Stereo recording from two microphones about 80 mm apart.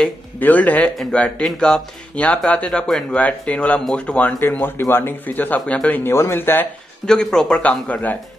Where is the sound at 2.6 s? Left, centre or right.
Centre.